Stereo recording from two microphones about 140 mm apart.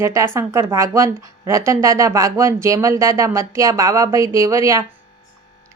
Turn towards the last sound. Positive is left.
turn(degrees=-20)  # may be behind; listen again after turning